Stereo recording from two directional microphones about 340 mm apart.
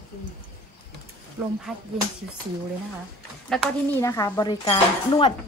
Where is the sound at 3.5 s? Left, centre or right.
Centre.